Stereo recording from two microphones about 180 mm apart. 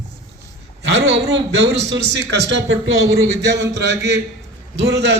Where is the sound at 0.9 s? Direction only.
75° right (ahead or behind).